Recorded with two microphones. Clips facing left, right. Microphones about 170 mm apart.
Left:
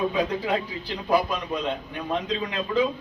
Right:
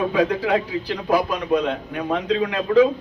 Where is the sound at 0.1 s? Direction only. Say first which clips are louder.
Right 6 dB; 70° right (ahead or behind).